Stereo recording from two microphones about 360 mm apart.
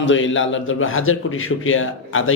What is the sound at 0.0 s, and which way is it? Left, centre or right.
A man's voice, left.